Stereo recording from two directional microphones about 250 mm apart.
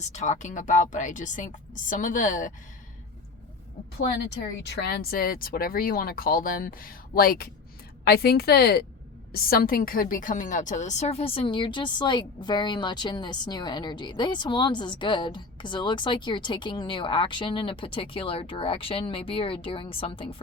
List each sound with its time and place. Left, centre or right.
0.1 s speech: left
4.6 s a woman's voice: left